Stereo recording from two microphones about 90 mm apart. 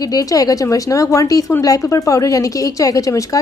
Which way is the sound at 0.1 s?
45° left (ahead or behind).